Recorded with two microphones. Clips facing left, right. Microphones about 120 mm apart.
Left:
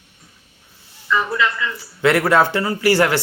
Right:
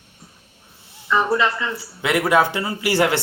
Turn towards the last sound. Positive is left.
turn(degrees=-20)  # may be behind; listen again after turning